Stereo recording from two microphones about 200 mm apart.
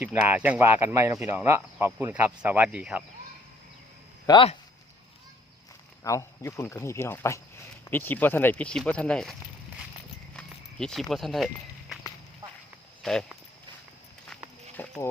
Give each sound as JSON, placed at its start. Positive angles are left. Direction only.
{"t": 0.0, "sound": "speech", "side_deg": -10}
{"t": 4.3, "sound": "speech", "side_deg": 25}
{"t": 6.0, "sound": "speech", "side_deg": 15}
{"t": 10.3, "sound": "a sound", "side_deg": 5}
{"t": 13.0, "sound": "speech", "side_deg": 0}
{"t": 14.8, "sound": "speech", "side_deg": 10}